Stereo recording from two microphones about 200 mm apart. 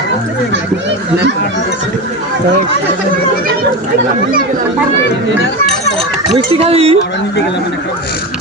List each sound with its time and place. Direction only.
0.5 s speech: 60° right (ahead or behind)
6.3 s speech: 30° right (ahead or behind)